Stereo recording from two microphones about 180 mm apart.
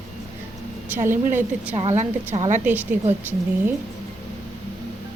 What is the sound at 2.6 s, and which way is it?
Speech, 10° right (ahead or behind).